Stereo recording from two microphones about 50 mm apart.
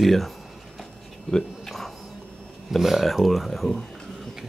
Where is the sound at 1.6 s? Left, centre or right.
Centre.